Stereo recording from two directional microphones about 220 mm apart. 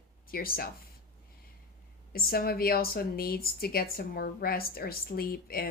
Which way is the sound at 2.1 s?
40° left (ahead or behind).